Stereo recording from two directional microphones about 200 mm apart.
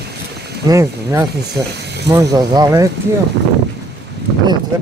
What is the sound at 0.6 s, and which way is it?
Speech, 15° right (ahead or behind).